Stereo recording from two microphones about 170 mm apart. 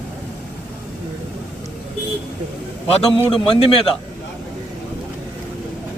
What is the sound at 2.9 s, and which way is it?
Speech, 35° left (ahead or behind).